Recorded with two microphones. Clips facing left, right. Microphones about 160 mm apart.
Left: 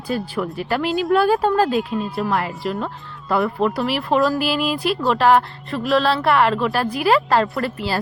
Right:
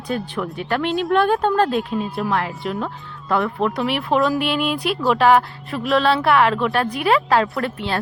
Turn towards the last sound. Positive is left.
turn(degrees=0)  # may be behind; listen again after turning